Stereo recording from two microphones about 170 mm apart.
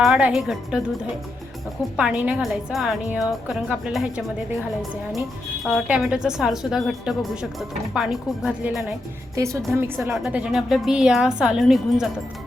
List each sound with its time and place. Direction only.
0.0 s a woman's voice: 5° right (ahead or behind)
2.0 s a woman's voice: 5° right (ahead or behind)
5.6 s a woman's voice: centre (ahead or behind)